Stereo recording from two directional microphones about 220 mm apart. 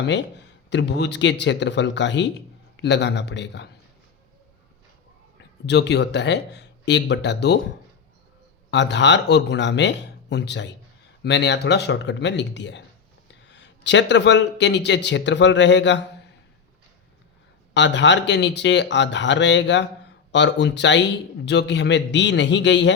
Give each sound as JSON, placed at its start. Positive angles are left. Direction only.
{"t": 0.0, "sound": "a man's voice", "side_deg": 55}
{"t": 5.6, "sound": "a man's voice", "side_deg": 50}
{"t": 8.7, "sound": "a man's voice", "side_deg": 55}
{"t": 17.7, "sound": "a man's voice", "side_deg": 55}